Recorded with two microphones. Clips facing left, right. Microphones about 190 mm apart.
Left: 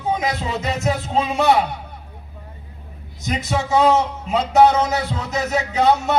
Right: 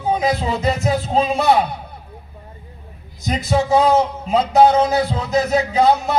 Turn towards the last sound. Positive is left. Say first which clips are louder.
# right 2 dB
turn(degrees=-35)  # may be behind; listen again after turning